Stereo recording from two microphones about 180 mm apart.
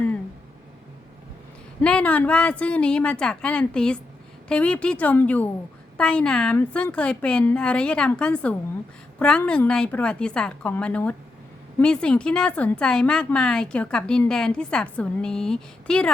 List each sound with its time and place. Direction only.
1.8 s a woman's voice: 5° left (ahead or behind)